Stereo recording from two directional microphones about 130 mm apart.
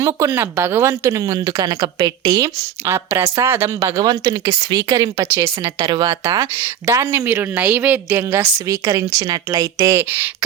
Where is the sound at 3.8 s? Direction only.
30° right (ahead or behind).